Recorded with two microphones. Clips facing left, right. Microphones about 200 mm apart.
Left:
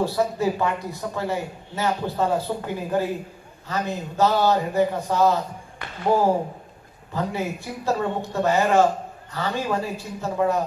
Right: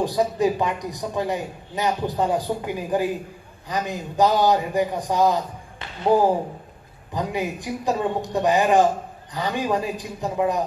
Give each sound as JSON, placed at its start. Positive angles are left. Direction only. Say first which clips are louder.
{"t": 0.0, "sound": "a man's voice", "louder": "right 1 dB", "side_deg": -15}
{"t": 7.2, "sound": "a man's voice", "louder": "right 1 dB", "side_deg": -15}